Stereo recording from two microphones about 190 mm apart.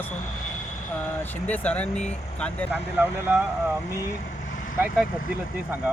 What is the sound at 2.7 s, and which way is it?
Speech, 10° right (ahead or behind).